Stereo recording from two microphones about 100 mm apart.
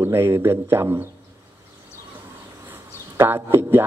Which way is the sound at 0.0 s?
25° right (ahead or behind).